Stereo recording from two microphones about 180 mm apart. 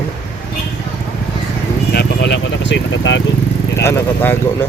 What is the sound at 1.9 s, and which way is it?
Speech, 65° left (ahead or behind).